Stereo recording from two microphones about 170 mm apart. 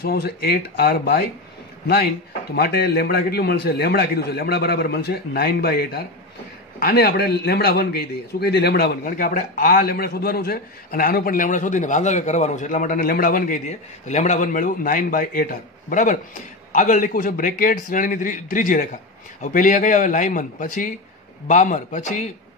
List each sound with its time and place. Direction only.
0.0 s a man's voice: 65° left (ahead or behind)
2.5 s a man's voice: 65° left (ahead or behind)
14.0 s a man's voice: 45° left (ahead or behind)